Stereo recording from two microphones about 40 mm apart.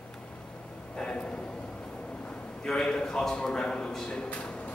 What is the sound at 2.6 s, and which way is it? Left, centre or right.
A man's voice, centre.